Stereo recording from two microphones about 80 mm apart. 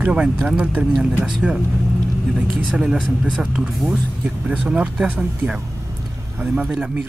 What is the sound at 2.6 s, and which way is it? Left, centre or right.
Speech, centre.